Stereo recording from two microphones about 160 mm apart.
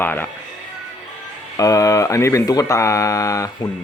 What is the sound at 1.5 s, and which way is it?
Speech, 20° left (ahead or behind).